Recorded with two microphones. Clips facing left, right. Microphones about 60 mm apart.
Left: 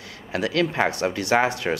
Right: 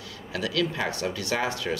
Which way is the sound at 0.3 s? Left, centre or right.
Left.